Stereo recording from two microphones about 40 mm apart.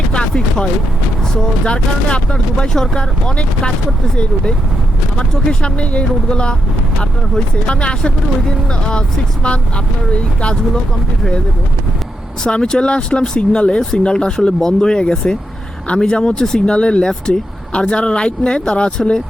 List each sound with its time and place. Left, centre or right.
0.1 s a sound: left
1.6 s speech: left
5.6 s speech: left
7.7 s speech: left
12.4 s speech: left
16.6 s speech: left